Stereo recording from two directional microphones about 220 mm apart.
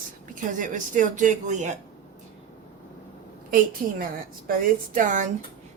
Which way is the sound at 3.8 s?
40° right (ahead or behind).